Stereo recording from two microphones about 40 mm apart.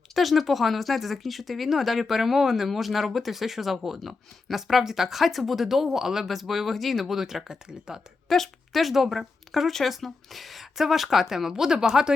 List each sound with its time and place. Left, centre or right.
0.1 s speech: centre
7.0 s speech: centre
8.3 s speech: centre